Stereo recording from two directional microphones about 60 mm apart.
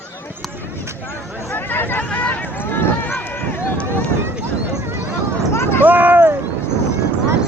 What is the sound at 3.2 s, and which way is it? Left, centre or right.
Run, left.